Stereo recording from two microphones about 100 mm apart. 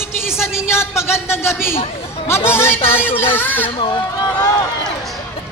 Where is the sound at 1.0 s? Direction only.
25° left (ahead or behind).